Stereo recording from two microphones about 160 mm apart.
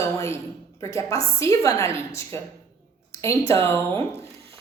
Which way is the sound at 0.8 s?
20° left (ahead or behind).